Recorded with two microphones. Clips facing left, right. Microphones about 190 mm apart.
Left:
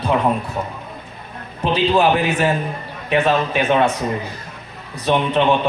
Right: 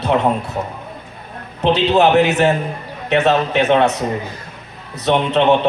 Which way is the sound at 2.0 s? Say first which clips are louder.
Right 4 dB; 75° right (ahead or behind).